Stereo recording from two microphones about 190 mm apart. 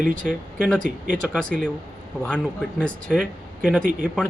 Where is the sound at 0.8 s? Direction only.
45° right (ahead or behind).